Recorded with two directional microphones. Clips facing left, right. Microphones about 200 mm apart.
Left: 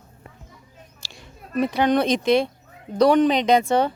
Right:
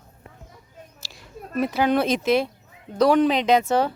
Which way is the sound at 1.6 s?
5° right (ahead or behind).